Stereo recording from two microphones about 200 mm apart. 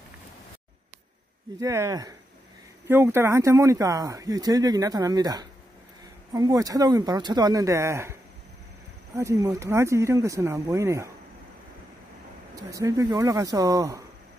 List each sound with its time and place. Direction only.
1.6 s speech: 15° right (ahead or behind)
12.5 s speech: 15° right (ahead or behind)